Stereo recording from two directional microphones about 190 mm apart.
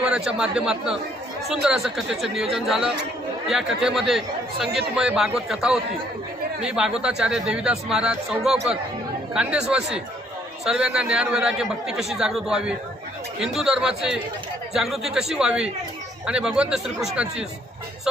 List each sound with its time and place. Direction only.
0.0 s a man's voice: 5° right (ahead or behind)